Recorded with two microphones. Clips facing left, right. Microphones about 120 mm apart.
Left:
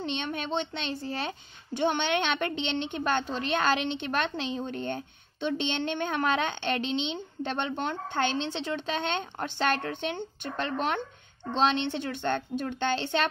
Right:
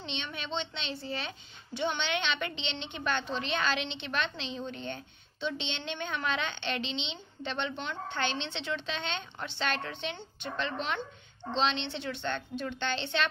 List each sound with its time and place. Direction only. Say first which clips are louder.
0.0 s a child's voice: left 7 dB; 45° left (ahead or behind)